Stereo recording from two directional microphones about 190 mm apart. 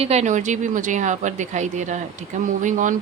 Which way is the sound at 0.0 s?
35° right (ahead or behind).